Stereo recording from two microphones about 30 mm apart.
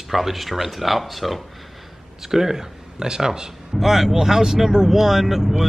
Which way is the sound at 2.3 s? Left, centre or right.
Centre.